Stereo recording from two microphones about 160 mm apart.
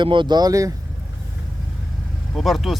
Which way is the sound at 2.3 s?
Centre (ahead or behind).